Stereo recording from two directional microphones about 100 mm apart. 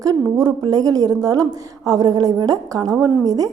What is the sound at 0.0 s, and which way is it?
A woman's voice, 40° right (ahead or behind).